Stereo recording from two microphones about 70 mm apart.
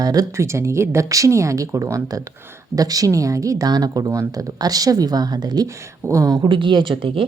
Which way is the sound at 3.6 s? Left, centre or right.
Right.